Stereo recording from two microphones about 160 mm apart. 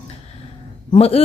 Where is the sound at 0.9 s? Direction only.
40° left (ahead or behind).